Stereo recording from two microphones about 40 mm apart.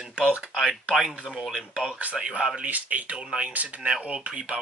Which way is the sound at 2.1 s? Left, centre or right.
Right.